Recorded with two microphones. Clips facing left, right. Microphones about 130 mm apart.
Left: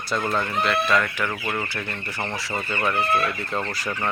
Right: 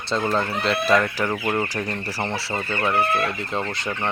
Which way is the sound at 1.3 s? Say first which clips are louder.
Right 5 dB; 20° right (ahead or behind).